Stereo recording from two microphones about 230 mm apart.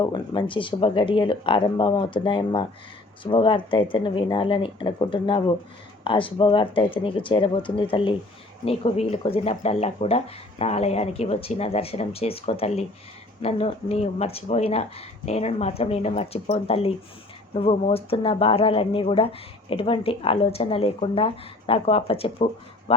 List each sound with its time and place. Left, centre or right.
0.0 s a man's voice: centre